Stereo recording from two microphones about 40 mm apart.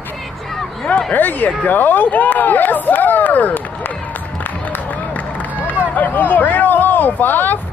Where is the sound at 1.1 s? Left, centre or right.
Left.